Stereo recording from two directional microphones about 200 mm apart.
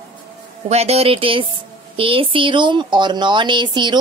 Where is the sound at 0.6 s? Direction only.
30° right (ahead or behind).